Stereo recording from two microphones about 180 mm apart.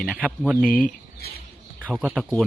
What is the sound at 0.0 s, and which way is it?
Speech, 5° right (ahead or behind).